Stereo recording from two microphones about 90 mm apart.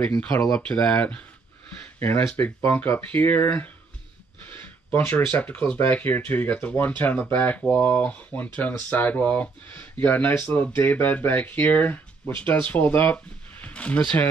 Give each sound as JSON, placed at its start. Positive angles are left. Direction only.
{"t": 0.3, "sound": "speech", "side_deg": 35}
{"t": 0.6, "sound": "speech", "side_deg": 10}
{"t": 4.6, "sound": "speech", "side_deg": 20}